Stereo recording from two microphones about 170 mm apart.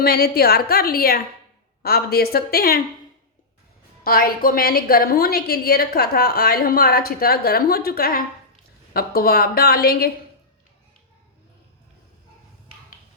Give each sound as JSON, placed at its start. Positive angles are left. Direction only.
{"t": 0.0, "sound": "a woman's voice", "side_deg": 65}
{"t": 4.0, "sound": "a woman's voice", "side_deg": 60}